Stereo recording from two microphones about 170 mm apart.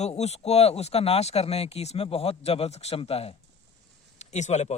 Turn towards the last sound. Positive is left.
turn(degrees=40)  # may be behind; listen again after turning